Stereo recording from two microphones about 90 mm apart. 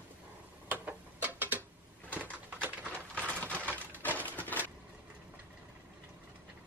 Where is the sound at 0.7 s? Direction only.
20° right (ahead or behind).